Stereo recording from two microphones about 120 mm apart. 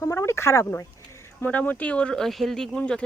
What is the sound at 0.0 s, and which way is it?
Speech, 20° left (ahead or behind).